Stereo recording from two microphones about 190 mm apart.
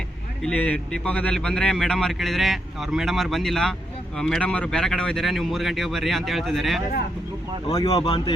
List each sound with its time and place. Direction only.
0.4 s a man's voice: 5° left (ahead or behind)
7.7 s speech: 20° left (ahead or behind)